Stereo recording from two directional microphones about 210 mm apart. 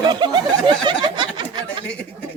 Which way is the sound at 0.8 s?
20° right (ahead or behind).